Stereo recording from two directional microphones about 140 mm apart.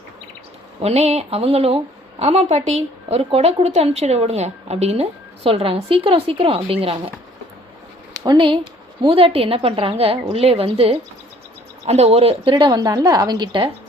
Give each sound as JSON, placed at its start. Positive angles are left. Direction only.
{"t": 0.8, "sound": "speech", "side_deg": -45}
{"t": 8.2, "sound": "a woman's voice", "side_deg": -35}